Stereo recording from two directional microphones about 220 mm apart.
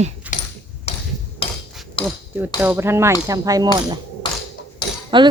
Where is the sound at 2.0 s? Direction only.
25° left (ahead or behind).